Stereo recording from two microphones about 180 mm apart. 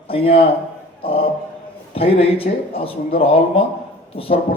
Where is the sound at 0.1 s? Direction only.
30° left (ahead or behind).